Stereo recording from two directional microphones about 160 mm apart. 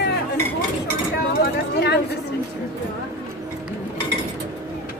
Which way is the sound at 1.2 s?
90° left.